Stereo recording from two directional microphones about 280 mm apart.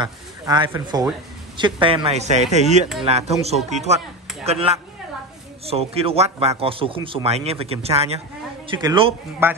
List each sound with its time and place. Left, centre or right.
0.0 s speech: centre